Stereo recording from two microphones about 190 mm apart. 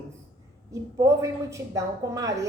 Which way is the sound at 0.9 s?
15° right (ahead or behind).